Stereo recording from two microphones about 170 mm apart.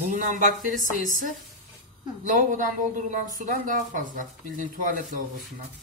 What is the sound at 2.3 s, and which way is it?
Speech, 50° right (ahead or behind).